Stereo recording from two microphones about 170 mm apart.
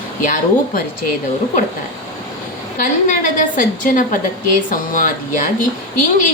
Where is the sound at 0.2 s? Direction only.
55° left (ahead or behind).